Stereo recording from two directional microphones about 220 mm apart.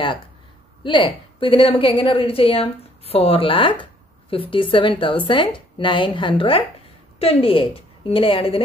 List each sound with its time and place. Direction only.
0.8 s a woman's voice: 20° left (ahead or behind)